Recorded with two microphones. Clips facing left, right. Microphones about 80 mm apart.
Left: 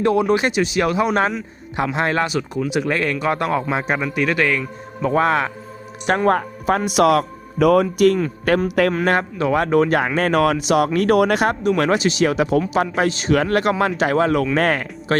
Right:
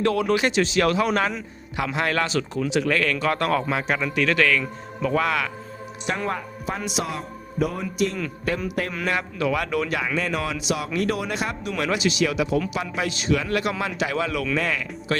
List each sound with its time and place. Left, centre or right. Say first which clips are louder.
0.0 s speech: left 4 dB; centre
5.0 s a man's voice: left 5 dB; left
6.2 s a man's voice: left 10 dB; left
8.9 s a man's voice: left 8 dB; left
11.8 s speech: left 2 dB; left